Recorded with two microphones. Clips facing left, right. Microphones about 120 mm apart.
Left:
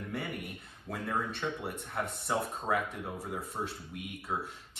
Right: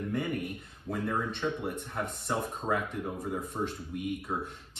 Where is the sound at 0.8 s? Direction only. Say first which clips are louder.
Right 3 dB; centre (ahead or behind).